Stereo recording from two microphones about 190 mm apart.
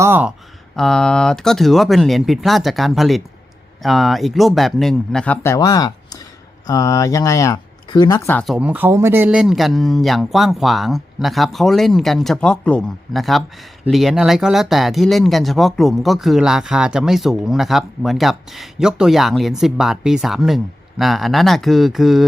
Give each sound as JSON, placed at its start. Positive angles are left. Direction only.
{"t": 0.0, "sound": "speech", "side_deg": -10}
{"t": 0.8, "sound": "speech", "side_deg": 5}
{"t": 8.3, "sound": "speech", "side_deg": 5}
{"t": 8.5, "sound": "speech", "side_deg": -10}